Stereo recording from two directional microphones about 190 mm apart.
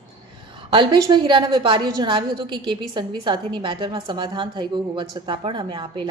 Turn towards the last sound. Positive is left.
turn(degrees=-25)  # may be behind; listen again after turning